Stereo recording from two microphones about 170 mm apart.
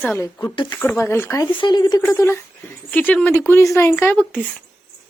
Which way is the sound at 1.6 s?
25° left (ahead or behind).